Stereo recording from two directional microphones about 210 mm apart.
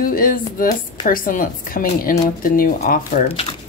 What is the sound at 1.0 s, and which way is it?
Speech, 40° left (ahead or behind).